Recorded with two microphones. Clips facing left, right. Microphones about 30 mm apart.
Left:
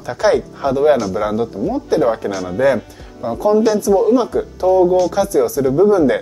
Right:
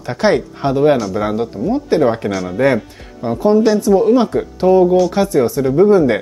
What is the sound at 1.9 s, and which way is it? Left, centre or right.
Speech, right.